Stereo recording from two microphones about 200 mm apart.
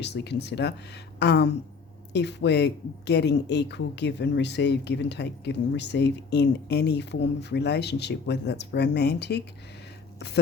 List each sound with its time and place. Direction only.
0.0 s speech: 55° left (ahead or behind)